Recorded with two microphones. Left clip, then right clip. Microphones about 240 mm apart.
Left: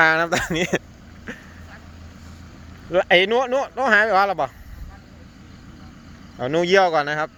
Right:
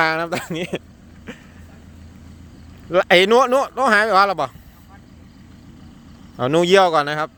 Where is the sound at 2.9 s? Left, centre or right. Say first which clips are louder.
Right 3 dB; centre.